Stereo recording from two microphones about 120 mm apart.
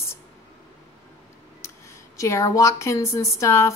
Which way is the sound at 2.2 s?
25° left (ahead or behind).